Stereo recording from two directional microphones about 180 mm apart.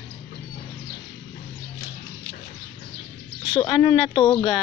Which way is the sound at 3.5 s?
25° left (ahead or behind).